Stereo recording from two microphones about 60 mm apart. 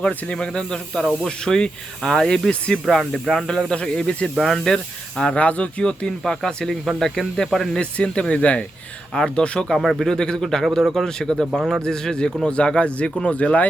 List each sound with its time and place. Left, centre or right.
0.3 s speech: centre
4.4 s speech: centre
7.8 s speech: centre